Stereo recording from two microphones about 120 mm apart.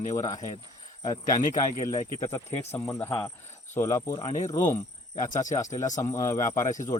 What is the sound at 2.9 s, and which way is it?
Cricket, 20° left (ahead or behind).